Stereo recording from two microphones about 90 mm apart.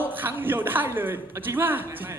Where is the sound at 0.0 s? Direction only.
20° right (ahead or behind).